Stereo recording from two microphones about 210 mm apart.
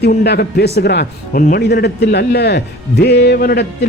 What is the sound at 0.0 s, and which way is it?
Speech, 50° left (ahead or behind).